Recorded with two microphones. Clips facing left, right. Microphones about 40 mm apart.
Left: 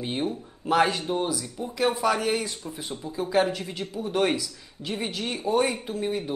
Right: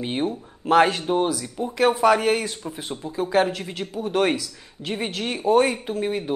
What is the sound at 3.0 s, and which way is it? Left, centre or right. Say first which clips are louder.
Speech: right 3 dB; right.